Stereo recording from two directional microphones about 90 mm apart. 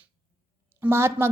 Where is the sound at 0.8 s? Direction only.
25° right (ahead or behind).